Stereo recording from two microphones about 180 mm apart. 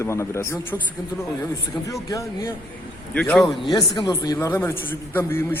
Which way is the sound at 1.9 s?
20° left (ahead or behind).